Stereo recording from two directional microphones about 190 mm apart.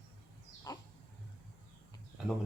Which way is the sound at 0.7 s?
20° left (ahead or behind).